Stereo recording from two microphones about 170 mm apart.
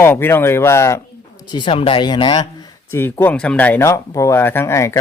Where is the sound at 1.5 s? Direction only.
25° left (ahead or behind).